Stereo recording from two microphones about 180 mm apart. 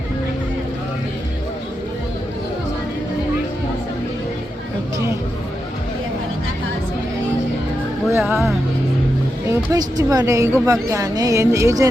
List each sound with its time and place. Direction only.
8.1 s music: 15° right (ahead or behind)
9.5 s a woman's voice: 20° right (ahead or behind)